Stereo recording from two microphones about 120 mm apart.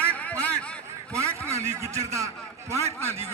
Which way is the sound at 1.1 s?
20° right (ahead or behind).